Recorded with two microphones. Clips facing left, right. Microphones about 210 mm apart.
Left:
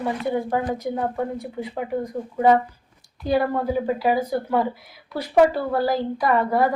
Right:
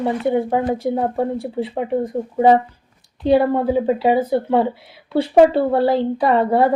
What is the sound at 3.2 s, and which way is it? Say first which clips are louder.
A woman's voice: right 6 dB; 30° right (ahead or behind).